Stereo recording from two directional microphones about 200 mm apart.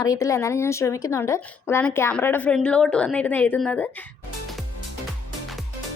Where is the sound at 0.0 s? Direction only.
15° left (ahead or behind).